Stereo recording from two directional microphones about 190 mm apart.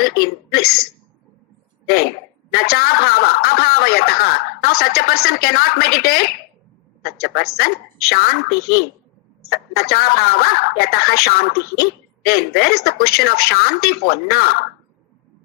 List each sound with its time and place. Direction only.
0.0 s a woman's voice: 55° left (ahead or behind)
2.5 s a woman's voice: 55° left (ahead or behind)